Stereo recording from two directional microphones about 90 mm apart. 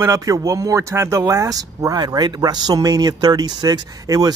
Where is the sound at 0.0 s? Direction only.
40° right (ahead or behind).